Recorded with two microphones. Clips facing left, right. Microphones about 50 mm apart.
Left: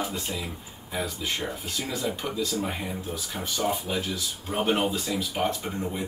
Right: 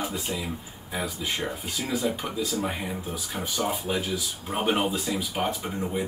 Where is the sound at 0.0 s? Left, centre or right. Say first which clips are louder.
Right 1 dB; centre.